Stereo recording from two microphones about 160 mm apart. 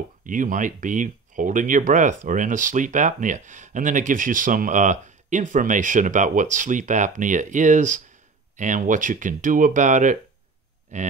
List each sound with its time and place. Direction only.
0.2 s speech: 55° right (ahead or behind)